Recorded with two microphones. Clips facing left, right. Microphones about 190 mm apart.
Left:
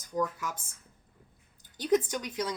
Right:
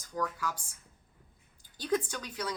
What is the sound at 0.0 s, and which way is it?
Speech, 20° left (ahead or behind).